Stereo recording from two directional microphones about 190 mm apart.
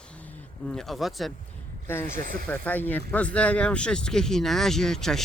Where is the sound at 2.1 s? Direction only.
45° right (ahead or behind).